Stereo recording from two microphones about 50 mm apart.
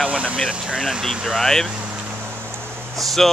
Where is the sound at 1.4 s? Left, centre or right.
Centre.